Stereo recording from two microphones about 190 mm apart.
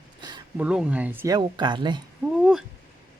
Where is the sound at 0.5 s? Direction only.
5° right (ahead or behind).